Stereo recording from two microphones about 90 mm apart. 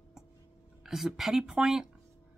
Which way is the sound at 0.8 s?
5° right (ahead or behind).